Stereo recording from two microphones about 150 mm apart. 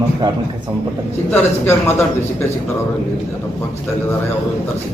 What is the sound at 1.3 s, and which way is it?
Speech, 15° left (ahead or behind).